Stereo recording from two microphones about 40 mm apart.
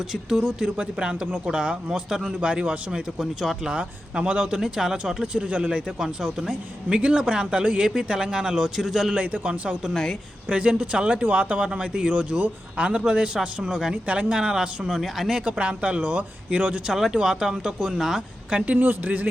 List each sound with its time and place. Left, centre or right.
0.1 s speech: centre
0.4 s a man's voice: right
2.4 s a man's voice: right
4.5 s speech: centre
5.5 s a man's voice: right; by 9.1 s centre
9.1 s speech: right
9.9 s a woman's voice: centre
10.5 s a man's voice: right
11.2 s a man's voice: right
14.8 s speech: centre
15.4 s speech: right
16.9 s speech: centre
18.6 s speech: right